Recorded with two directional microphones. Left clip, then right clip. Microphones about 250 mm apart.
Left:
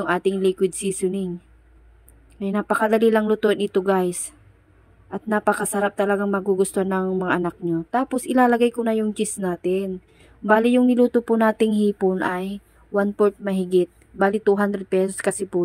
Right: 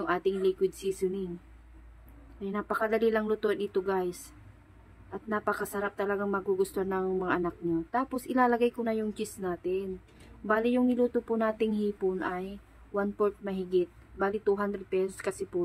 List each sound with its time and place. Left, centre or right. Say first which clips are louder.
0.0 s a woman's voice: left 7 dB; left
2.4 s a woman's voice: left 9 dB; left